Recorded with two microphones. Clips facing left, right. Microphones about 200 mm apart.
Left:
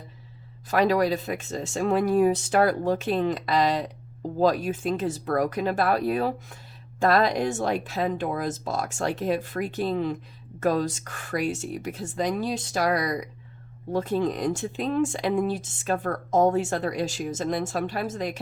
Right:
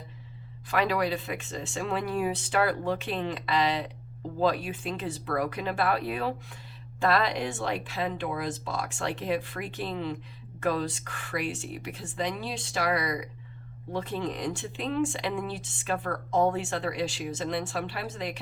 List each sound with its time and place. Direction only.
0.7 s speech: 40° left (ahead or behind)